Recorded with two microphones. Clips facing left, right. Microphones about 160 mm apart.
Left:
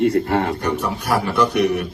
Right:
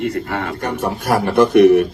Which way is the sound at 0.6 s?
50° right (ahead or behind).